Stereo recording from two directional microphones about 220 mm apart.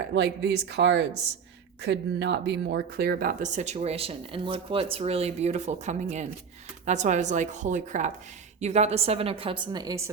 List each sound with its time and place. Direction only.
0.0 s a woman's voice: 55° right (ahead or behind); by 10.1 s 15° right (ahead or behind)